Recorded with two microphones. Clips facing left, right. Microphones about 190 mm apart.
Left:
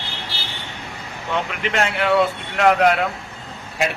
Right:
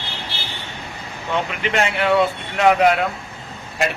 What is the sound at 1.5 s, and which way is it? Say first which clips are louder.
Speech: right 1 dB; centre (ahead or behind).